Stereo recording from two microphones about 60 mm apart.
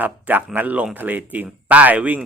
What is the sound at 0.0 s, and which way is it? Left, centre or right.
Speech, right.